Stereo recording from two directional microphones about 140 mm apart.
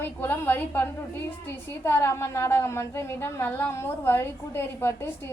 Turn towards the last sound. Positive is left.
turn(degrees=15)  # may be behind; listen again after turning